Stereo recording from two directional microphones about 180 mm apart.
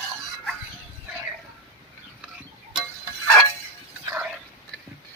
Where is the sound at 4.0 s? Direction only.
10° right (ahead or behind).